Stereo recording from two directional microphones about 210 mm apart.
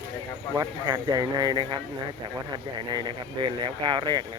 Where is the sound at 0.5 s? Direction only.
15° right (ahead or behind).